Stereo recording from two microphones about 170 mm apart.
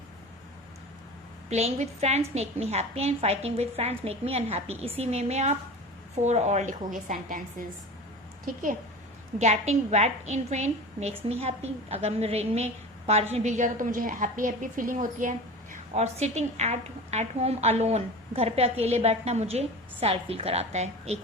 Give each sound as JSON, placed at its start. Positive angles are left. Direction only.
{"t": 1.5, "sound": "a woman's voice", "side_deg": -40}
{"t": 9.4, "sound": "a woman's voice", "side_deg": -40}